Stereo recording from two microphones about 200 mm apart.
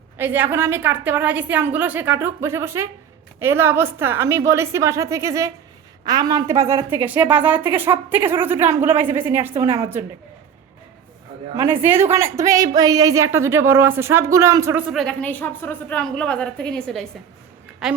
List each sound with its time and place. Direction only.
0.2 s a woman's voice: 10° right (ahead or behind)
11.5 s a woman's voice: 15° right (ahead or behind)